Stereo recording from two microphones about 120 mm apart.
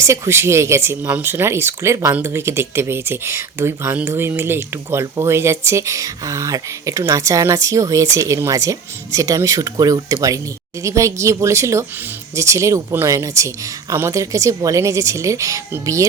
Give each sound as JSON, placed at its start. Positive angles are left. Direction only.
{"t": 0.0, "sound": "speech", "side_deg": -25}